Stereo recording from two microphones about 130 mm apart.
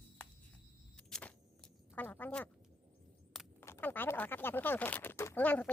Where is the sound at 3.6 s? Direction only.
15° left (ahead or behind).